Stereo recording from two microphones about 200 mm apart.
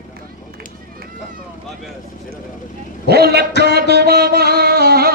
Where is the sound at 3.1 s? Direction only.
55° right (ahead or behind).